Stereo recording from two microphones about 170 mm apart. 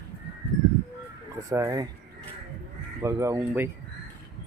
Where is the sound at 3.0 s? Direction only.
15° right (ahead or behind).